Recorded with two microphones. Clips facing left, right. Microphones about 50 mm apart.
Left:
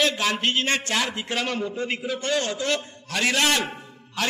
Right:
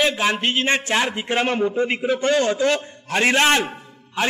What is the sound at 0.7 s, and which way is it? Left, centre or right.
A man's voice, right.